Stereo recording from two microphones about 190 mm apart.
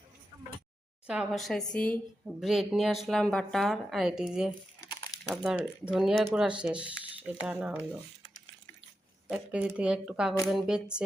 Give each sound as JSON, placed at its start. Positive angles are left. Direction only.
{"t": 1.0, "sound": "a woman's voice", "side_deg": -5}
{"t": 4.8, "sound": "a sound", "side_deg": 20}
{"t": 5.3, "sound": "a woman's voice", "side_deg": -5}
{"t": 9.3, "sound": "a woman's voice", "side_deg": -5}